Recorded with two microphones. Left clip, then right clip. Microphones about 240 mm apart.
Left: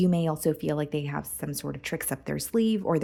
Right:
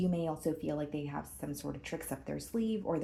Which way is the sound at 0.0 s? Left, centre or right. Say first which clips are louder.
Left 8 dB; left.